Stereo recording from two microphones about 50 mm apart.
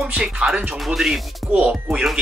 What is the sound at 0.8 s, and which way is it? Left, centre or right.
Speech, centre.